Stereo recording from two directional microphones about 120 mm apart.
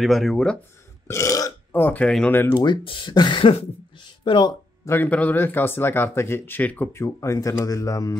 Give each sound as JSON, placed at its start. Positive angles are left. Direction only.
{"t": 0.0, "sound": "speech", "side_deg": 0}
{"t": 1.0, "sound": "burping", "side_deg": 25}
{"t": 1.7, "sound": "speech", "side_deg": 15}
{"t": 2.5, "sound": "speech", "side_deg": 40}
{"t": 4.8, "sound": "speech", "side_deg": 15}